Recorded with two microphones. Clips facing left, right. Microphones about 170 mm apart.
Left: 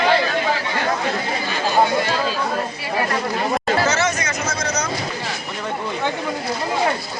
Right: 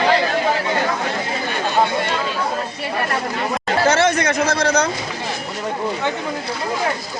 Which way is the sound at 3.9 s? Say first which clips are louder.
Right 5 dB; 60° right (ahead or behind).